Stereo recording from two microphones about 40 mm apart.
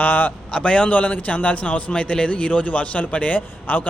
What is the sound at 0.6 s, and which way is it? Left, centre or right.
A man's voice, left.